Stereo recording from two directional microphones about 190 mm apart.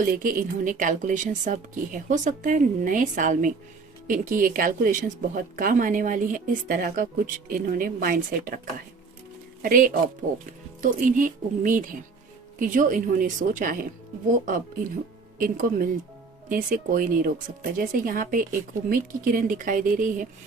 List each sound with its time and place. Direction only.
0.0 s speech: 50° right (ahead or behind)
15.4 s speech: 45° right (ahead or behind)